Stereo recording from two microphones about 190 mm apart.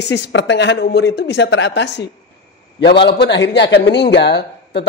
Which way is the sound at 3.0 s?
65° left (ahead or behind).